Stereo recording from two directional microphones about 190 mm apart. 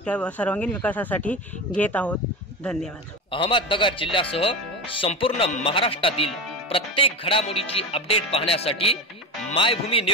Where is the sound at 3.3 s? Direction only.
25° left (ahead or behind).